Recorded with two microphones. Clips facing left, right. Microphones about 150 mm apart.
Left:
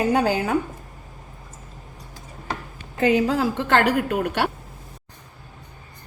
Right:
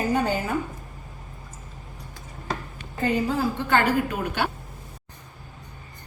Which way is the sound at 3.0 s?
90° left.